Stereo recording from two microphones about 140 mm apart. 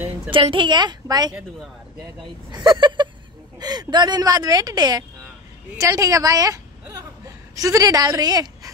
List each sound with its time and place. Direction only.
0.3 s speech: 35° right (ahead or behind)
2.5 s a woman's voice: 30° right (ahead or behind)